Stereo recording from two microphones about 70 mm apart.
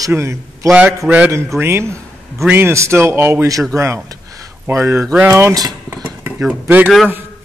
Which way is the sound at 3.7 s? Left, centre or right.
Right.